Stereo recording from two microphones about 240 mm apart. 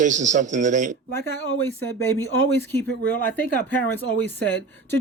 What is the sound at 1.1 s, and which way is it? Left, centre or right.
Speech, right.